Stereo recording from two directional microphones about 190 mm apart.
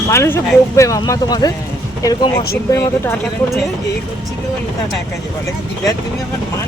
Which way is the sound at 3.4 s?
Centre (ahead or behind).